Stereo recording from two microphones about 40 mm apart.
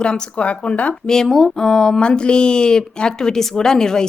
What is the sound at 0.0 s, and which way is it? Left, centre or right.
Speech, left.